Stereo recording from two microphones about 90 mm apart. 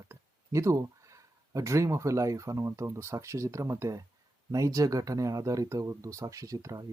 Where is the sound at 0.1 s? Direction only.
35° right (ahead or behind).